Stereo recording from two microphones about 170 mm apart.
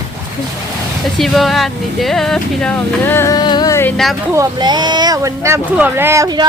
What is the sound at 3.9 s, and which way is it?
Speech, centre (ahead or behind).